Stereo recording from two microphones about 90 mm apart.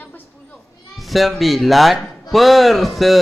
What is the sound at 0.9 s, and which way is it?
Speech, centre (ahead or behind).